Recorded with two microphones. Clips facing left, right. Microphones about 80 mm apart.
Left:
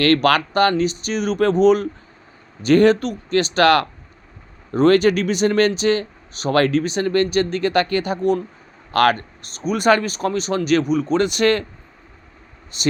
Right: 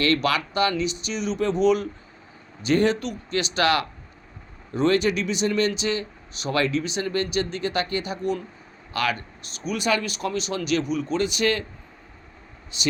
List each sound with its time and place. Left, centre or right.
0.0 s speech: left
12.7 s speech: left